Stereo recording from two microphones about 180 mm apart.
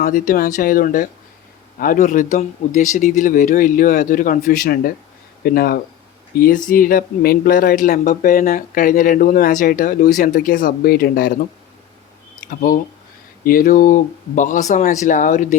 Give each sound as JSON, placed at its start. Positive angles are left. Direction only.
{"t": 0.0, "sound": "speech", "side_deg": 50}
{"t": 12.5, "sound": "speech", "side_deg": 50}